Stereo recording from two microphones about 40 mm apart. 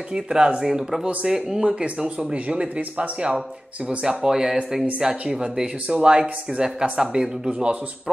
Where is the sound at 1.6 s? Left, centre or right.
Right.